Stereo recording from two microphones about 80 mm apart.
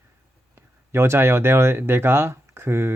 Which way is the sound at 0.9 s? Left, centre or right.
Right.